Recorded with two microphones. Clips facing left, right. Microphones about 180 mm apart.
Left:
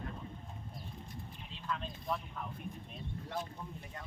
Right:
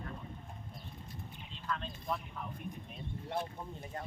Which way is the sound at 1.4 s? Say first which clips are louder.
Right 1 dB; 5° left (ahead or behind).